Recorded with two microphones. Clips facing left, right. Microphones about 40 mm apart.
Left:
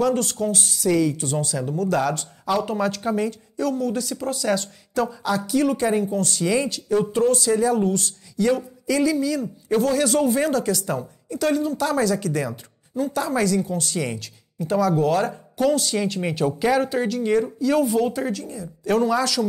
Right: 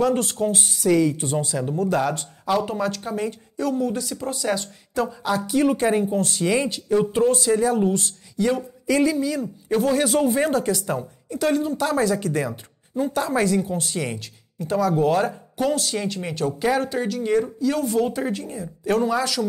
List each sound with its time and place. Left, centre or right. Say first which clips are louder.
0.0 s speech: even; centre
5.5 s speech: right 1 dB; centre
8.8 s speech: right 2 dB; right
9.1 s speech: left 1 dB; centre
14.0 s speech: left 1 dB; centre
18.3 s speech: right 1 dB; right
18.9 s speech: left 1 dB; centre